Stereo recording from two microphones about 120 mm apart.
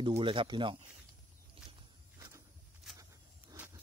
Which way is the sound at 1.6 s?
50° right (ahead or behind).